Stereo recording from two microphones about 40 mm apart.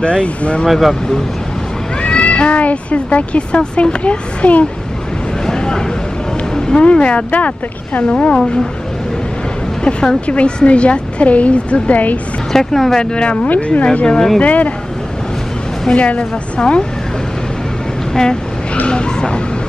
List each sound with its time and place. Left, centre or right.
0.0 s speech: left
0.7 s speech: centre
2.0 s speech: left
5.5 s a sound: centre
6.8 s speech: left
7.2 s speech: left
9.8 s speech: left
12.5 s speech: centre
13.0 s speech: left
14.0 s speech: centre
14.4 s speech: left
15.9 s speech: left
18.1 s speech: centre
18.9 s dog: left